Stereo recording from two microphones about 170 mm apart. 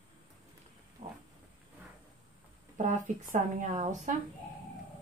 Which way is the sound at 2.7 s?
45° right (ahead or behind).